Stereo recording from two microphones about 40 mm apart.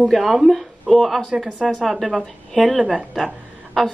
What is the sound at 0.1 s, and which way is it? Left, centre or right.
Speech, centre.